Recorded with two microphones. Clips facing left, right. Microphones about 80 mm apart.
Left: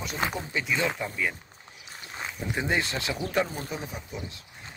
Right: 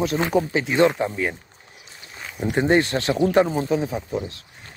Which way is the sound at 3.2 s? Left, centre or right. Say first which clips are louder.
Right 11 dB; right.